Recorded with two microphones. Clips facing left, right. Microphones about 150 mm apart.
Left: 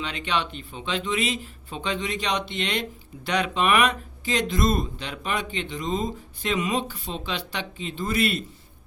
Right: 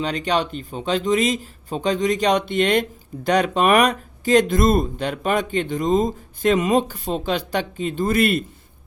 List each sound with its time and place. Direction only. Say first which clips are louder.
0.0 s speech: right 6 dB; 40° right (ahead or behind)